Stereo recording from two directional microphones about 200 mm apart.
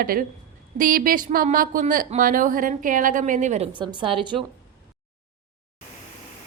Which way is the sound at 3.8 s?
25° right (ahead or behind).